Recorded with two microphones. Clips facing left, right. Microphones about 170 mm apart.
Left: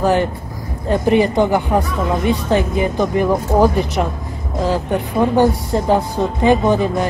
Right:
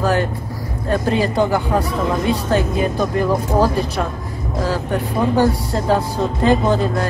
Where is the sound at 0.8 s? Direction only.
20° left (ahead or behind).